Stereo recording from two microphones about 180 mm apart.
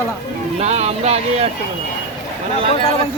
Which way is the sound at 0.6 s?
35° right (ahead or behind).